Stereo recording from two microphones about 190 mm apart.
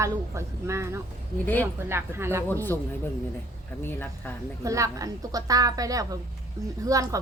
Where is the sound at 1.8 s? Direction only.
10° right (ahead or behind).